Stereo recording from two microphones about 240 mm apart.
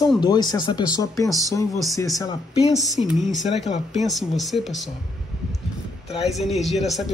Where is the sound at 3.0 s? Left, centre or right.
Centre.